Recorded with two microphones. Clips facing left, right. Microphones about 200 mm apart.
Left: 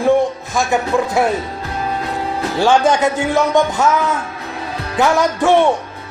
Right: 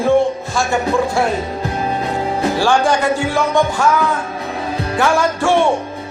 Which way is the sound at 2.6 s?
20° left (ahead or behind).